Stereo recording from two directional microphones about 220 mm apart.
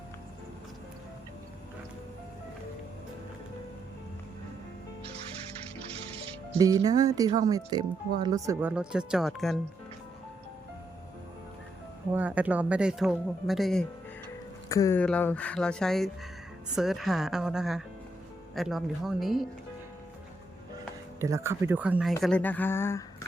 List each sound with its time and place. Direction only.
6.6 s speech: 15° right (ahead or behind); by 9.6 s centre (ahead or behind)
12.1 s speech: 5° right (ahead or behind)
14.7 s speech: 15° left (ahead or behind)
21.2 s speech: 15° right (ahead or behind)
22.2 s speech: 5° left (ahead or behind)